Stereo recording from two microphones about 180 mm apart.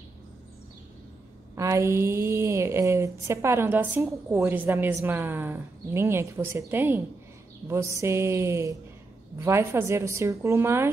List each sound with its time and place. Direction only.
1.5 s a woman's voice: 15° right (ahead or behind)